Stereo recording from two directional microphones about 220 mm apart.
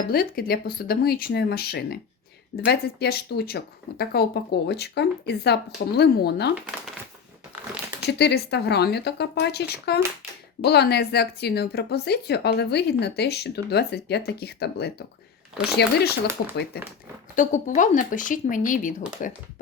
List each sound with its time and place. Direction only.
0.1 s speech: 45° left (ahead or behind)
8.2 s speech: 50° left (ahead or behind)
17.3 s speech: 35° left (ahead or behind)